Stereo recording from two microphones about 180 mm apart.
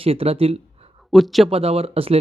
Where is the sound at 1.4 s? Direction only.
35° right (ahead or behind).